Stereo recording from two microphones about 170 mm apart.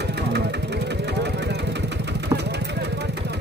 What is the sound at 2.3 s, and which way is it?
Vehicle, 20° right (ahead or behind).